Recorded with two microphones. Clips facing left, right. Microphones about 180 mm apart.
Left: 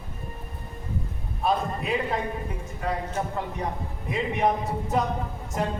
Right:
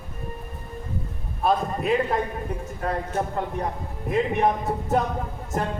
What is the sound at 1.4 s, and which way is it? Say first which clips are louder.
A man's voice: right 3 dB; 50° right (ahead or behind).